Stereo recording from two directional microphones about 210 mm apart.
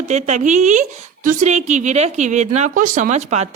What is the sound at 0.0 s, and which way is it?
A woman's voice, 30° right (ahead or behind).